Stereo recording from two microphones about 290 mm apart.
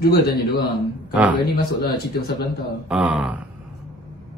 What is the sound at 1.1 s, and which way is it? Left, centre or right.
Speech, centre.